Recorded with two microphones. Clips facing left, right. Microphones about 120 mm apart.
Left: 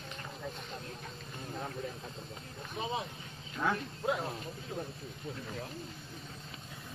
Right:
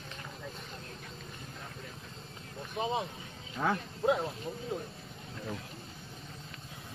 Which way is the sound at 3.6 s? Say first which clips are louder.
Right 1 dB; 35° right (ahead or behind).